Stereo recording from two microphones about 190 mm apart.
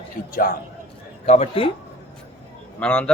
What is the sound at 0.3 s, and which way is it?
Speech, 50° left (ahead or behind).